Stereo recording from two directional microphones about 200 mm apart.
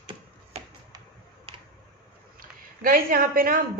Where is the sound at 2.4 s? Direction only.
45° right (ahead or behind).